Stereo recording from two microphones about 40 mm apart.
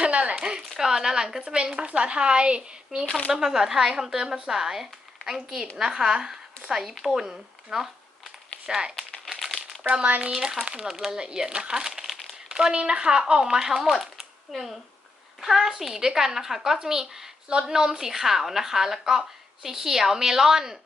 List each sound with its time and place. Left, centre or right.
0.0 s a sound: right
0.8 s a woman's voice: centre
6.8 s a woman's voice: centre
8.6 s speech: right
9.4 s crumpling: centre
10.3 s a woman's voice: centre
12.0 s crumpling: centre
12.5 s speech: right
14.0 s a sound: centre
15.4 s a woman's voice: centre